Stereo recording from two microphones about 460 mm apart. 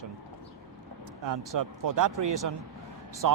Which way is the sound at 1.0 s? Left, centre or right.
Right.